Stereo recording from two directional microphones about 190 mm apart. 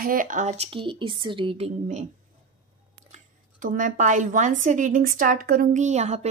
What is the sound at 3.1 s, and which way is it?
Speech, 45° right (ahead or behind).